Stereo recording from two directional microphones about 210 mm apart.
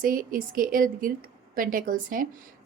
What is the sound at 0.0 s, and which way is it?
Speech, 40° right (ahead or behind).